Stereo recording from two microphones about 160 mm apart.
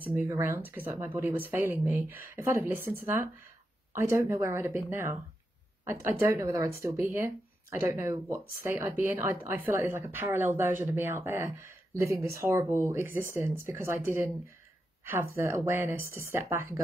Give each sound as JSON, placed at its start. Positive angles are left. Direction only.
{"t": 0.0, "sound": "a woman's voice", "side_deg": -15}